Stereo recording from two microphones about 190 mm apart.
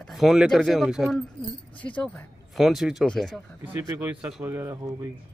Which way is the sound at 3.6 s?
10° right (ahead or behind).